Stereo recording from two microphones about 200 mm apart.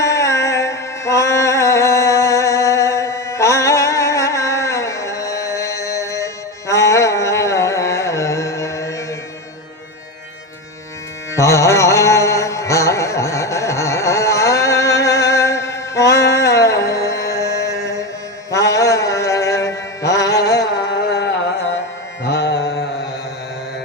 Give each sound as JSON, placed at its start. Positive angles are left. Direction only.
{"t": 0.0, "sound": "music", "side_deg": 15}
{"t": 11.3, "sound": "music", "side_deg": 15}
{"t": 20.6, "sound": "carnatic music", "side_deg": 55}
{"t": 22.2, "sound": "music", "side_deg": 60}